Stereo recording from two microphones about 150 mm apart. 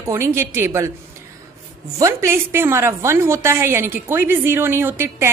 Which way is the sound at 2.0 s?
20° right (ahead or behind).